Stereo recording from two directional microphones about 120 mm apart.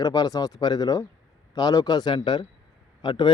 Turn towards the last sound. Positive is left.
turn(degrees=40)  # may be behind; listen again after turning